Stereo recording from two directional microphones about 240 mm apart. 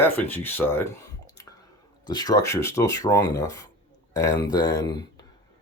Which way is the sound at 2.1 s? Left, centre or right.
Centre.